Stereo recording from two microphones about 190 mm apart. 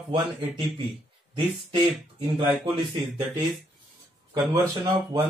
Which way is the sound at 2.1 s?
25° right (ahead or behind).